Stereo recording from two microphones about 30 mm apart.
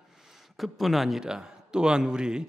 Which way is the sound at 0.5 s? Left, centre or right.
Centre.